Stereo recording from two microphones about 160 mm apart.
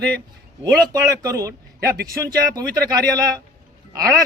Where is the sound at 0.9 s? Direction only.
20° right (ahead or behind).